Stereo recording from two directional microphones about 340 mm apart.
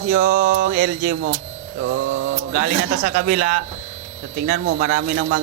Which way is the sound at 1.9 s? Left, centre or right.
Right.